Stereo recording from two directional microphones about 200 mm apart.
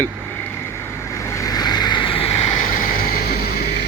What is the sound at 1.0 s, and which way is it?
Vehicle, 15° left (ahead or behind).